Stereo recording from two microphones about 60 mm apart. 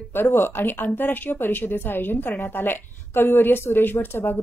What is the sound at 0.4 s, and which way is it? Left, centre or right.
A woman's voice, left.